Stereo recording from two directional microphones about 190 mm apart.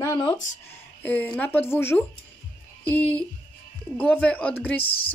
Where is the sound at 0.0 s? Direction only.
20° left (ahead or behind).